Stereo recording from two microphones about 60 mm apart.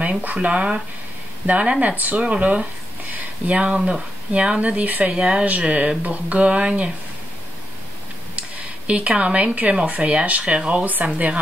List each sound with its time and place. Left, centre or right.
0.0 s speech: right
8.4 s speech: right